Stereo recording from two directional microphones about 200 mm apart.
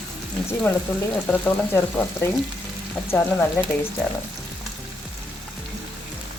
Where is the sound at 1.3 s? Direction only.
10° left (ahead or behind).